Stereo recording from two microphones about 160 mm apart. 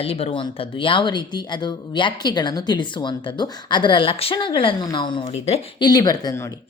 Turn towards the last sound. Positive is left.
turn(degrees=20)  # may be behind; listen again after turning